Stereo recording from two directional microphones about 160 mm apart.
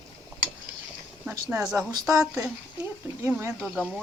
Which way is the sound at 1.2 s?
15° right (ahead or behind).